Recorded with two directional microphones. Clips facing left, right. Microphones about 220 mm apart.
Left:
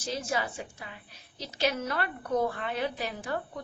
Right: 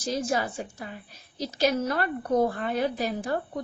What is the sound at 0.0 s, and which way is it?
A woman's voice, 40° right (ahead or behind).